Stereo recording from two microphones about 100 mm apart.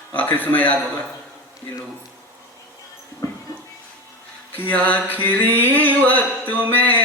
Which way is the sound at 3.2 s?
40° left (ahead or behind).